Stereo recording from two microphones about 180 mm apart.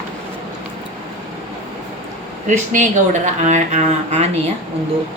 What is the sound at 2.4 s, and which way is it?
A woman's voice, 40° right (ahead or behind).